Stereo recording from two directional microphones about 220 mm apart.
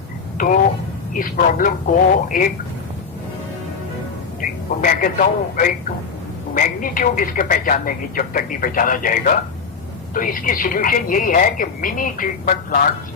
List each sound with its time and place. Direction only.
0.3 s a sound: 40° left (ahead or behind)
1.1 s speech: 40° left (ahead or behind)
4.4 s speech: 40° left (ahead or behind)